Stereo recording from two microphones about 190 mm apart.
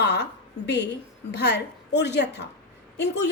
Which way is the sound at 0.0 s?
60° left (ahead or behind).